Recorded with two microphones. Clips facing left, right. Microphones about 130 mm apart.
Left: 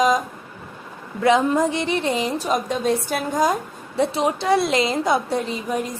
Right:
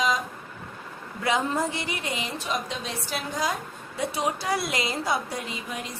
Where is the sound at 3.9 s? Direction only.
30° left (ahead or behind).